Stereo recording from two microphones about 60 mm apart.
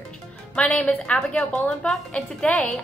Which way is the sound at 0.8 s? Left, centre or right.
Centre.